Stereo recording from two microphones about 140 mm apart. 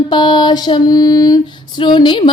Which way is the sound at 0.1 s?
35° left (ahead or behind).